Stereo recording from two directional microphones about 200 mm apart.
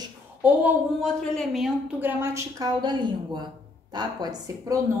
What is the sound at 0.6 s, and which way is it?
A woman's voice, centre (ahead or behind).